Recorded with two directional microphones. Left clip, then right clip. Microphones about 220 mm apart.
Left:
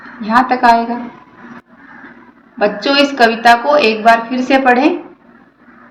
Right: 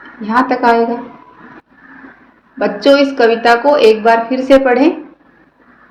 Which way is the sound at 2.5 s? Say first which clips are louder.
Right 2 dB; 35° right (ahead or behind).